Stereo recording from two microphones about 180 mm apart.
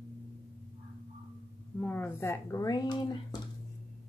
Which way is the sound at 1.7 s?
10° left (ahead or behind).